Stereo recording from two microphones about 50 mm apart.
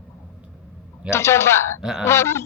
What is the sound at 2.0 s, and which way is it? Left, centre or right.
Speech, left.